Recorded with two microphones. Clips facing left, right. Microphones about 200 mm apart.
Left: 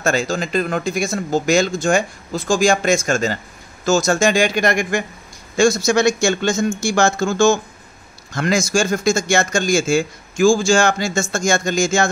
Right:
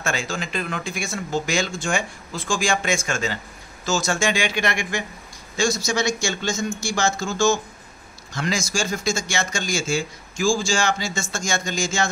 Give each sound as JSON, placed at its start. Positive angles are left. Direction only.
{"t": 0.0, "sound": "speech", "side_deg": 40}
{"t": 5.6, "sound": "a man's voice", "side_deg": 55}